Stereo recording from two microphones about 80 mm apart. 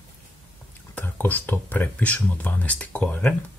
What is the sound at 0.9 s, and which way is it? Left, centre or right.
Speech, left.